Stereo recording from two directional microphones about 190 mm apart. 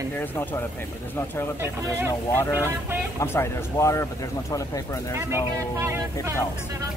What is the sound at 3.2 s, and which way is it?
Speech, 15° left (ahead or behind).